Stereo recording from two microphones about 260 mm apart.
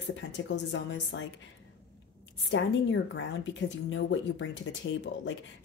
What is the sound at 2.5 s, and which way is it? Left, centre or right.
Speech, left.